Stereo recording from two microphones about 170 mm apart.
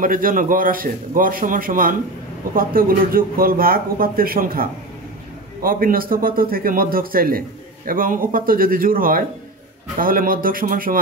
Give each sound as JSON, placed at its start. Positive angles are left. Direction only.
{"t": 0.0, "sound": "a man's voice", "side_deg": -55}